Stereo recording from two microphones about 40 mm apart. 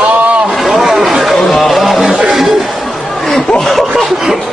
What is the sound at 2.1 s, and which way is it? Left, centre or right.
Music, centre.